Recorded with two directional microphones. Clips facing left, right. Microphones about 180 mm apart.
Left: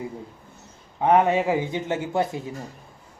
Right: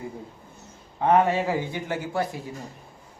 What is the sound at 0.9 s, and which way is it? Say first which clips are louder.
Speech: left 2 dB; 15° left (ahead or behind).